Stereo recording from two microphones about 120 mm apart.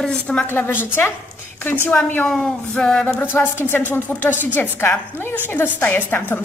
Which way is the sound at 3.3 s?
15° left (ahead or behind).